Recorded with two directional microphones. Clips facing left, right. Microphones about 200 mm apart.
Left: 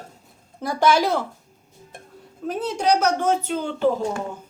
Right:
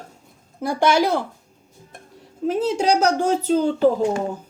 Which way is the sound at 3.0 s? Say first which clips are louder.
Right 2 dB; 30° right (ahead or behind).